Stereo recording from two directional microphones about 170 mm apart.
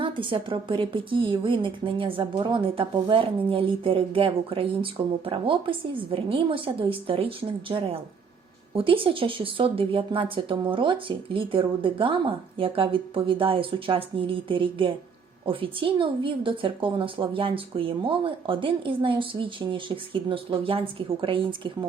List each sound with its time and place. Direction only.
0.0 s a woman's voice: 30° right (ahead or behind)